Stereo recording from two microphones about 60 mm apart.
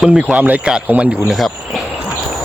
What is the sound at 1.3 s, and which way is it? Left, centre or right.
Cricket, centre.